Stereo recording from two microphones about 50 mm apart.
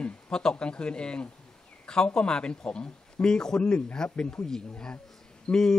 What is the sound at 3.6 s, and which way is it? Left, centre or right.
Speech, left.